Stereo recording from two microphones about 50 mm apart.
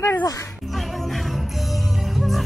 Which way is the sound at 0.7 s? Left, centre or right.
Centre.